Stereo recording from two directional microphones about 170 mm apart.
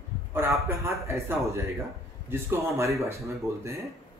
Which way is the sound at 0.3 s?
15° right (ahead or behind).